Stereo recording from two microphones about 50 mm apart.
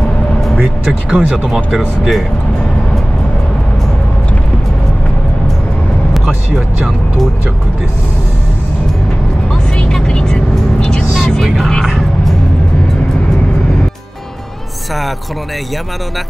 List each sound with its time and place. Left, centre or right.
1.1 s speech: right
1.8 s speech: centre
6.1 s vehicle: centre
9.8 s vehicle: centre
11.1 s music: centre